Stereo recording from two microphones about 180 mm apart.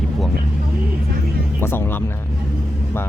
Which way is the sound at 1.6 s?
10° left (ahead or behind).